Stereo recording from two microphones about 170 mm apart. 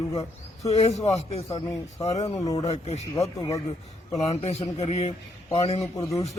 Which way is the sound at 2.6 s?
35° left (ahead or behind).